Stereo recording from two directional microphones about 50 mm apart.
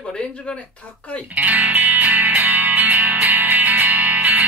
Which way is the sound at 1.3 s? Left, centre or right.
Right.